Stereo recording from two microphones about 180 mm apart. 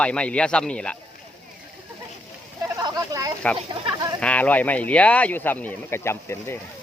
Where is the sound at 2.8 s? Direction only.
20° right (ahead or behind).